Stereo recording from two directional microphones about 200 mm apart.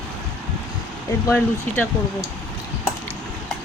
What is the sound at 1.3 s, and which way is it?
Speech, 10° left (ahead or behind).